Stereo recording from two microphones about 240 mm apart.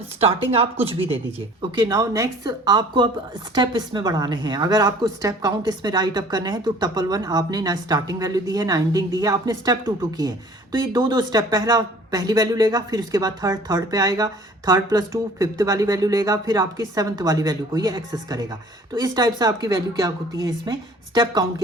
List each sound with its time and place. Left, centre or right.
0.2 s a woman's voice: right